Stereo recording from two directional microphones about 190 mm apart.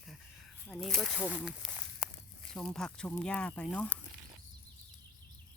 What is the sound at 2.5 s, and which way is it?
Speech, 5° left (ahead or behind).